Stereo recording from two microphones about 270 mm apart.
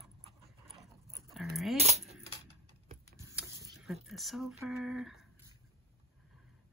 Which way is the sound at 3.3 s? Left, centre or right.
Centre.